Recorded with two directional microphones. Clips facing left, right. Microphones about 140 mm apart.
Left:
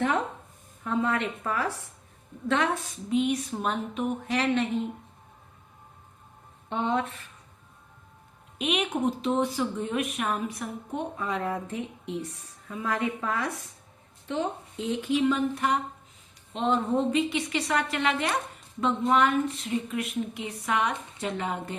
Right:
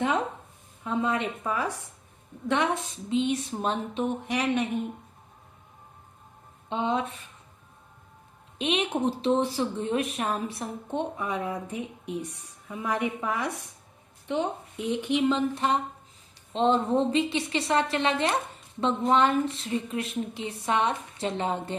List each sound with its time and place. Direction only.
0.9 s a woman's voice: 20° right (ahead or behind)
3.1 s a woman's voice: 25° right (ahead or behind)
4.3 s speech: 15° right (ahead or behind)
6.7 s speech: 15° right (ahead or behind)
8.5 s a woman's voice: 30° right (ahead or behind)
11.2 s a woman's voice: 15° right (ahead or behind)